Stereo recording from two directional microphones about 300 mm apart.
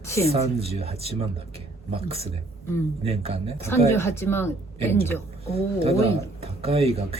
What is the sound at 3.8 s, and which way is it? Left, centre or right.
Speech, centre.